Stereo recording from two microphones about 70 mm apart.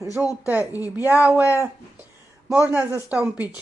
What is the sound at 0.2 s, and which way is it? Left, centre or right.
Speech, right.